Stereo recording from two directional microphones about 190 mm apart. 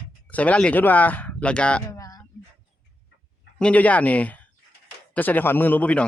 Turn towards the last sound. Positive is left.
turn(degrees=10)  # may be behind; listen again after turning